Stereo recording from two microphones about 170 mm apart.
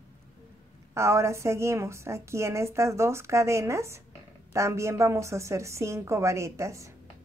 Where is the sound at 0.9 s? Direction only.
15° right (ahead or behind).